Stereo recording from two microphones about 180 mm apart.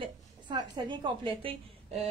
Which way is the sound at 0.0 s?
25° right (ahead or behind).